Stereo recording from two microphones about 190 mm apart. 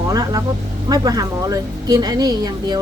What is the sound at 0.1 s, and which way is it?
Speech, 20° right (ahead or behind).